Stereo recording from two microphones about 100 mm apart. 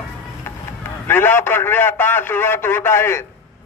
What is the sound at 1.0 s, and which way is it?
A man's voice, 20° left (ahead or behind).